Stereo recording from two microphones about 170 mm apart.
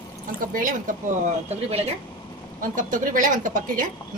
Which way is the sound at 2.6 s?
50° right (ahead or behind).